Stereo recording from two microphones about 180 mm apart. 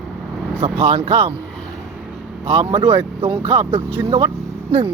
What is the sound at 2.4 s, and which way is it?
Speech, 30° right (ahead or behind).